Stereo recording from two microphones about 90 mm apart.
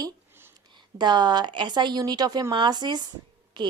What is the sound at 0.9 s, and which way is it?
Speech, 55° right (ahead or behind).